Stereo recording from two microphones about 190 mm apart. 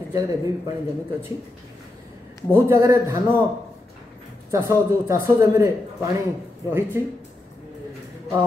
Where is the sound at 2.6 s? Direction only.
15° right (ahead or behind).